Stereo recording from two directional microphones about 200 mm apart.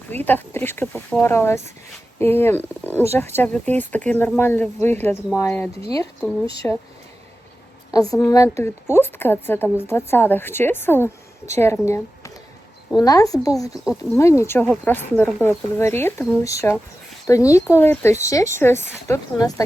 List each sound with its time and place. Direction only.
0.1 s speech: 10° left (ahead or behind)
7.9 s a woman's voice: 15° left (ahead or behind)